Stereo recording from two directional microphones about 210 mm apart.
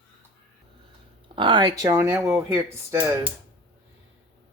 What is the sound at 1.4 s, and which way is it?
Speech, 20° right (ahead or behind).